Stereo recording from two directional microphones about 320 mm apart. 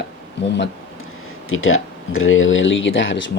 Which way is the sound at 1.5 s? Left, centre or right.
Left.